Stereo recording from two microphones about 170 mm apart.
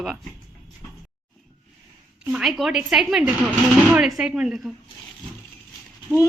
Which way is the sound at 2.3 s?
Centre (ahead or behind).